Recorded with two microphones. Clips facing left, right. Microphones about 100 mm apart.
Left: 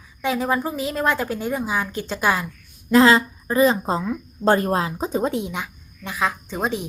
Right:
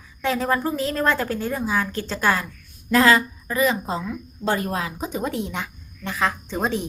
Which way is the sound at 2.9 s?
25° left (ahead or behind).